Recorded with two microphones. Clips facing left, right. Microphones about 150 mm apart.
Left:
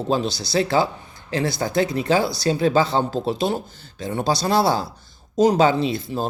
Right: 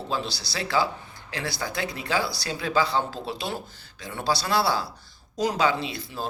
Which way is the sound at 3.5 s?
20° left (ahead or behind).